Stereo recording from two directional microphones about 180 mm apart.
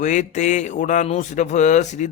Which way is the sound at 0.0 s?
45° left (ahead or behind).